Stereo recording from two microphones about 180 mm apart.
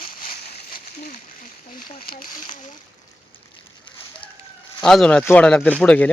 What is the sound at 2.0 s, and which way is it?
Speech, 55° left (ahead or behind).